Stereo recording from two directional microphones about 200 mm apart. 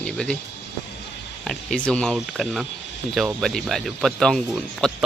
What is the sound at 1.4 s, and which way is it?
Speech, centre (ahead or behind).